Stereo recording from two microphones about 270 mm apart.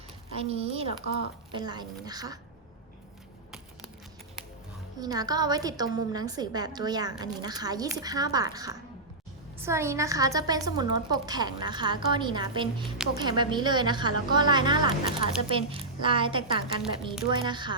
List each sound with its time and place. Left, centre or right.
0.3 s a woman's voice: right
4.9 s a woman's voice: centre